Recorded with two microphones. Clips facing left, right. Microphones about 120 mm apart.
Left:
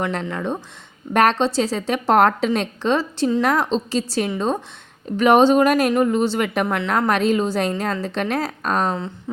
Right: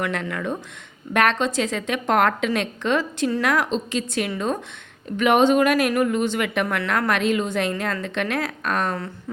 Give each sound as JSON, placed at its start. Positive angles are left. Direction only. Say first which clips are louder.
{"t": 0.0, "sound": "a woman's voice", "louder": "left 2 dB", "side_deg": 30}
{"t": 6.7, "sound": "speech", "louder": "left 3 dB", "side_deg": 20}
{"t": 7.1, "sound": "a woman's voice", "louder": "left 3 dB", "side_deg": 35}